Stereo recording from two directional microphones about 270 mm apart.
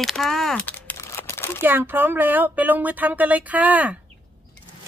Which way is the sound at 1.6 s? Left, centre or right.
Centre.